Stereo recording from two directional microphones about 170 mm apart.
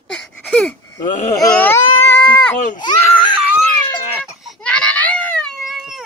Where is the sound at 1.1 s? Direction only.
45° left (ahead or behind).